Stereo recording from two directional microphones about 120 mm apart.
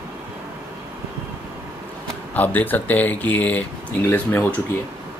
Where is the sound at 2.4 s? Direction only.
15° left (ahead or behind).